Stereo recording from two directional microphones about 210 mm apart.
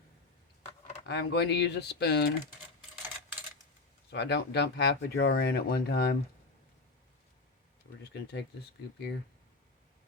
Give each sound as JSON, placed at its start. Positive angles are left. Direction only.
{"t": 1.0, "sound": "speech", "side_deg": 55}
{"t": 4.1, "sound": "speech", "side_deg": 55}
{"t": 8.1, "sound": "speech", "side_deg": 55}